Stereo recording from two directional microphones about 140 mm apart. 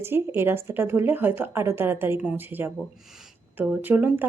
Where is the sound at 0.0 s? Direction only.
15° right (ahead or behind).